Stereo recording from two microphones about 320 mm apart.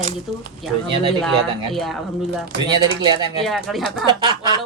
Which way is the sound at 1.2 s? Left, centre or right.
Centre.